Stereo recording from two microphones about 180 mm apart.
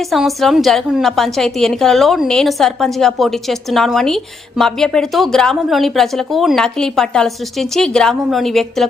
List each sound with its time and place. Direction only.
0.1 s a woman's voice: centre (ahead or behind)